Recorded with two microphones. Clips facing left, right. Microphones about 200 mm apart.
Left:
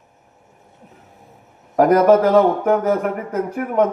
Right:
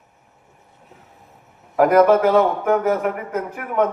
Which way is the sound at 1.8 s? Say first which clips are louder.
Left 1 dB; 40° left (ahead or behind).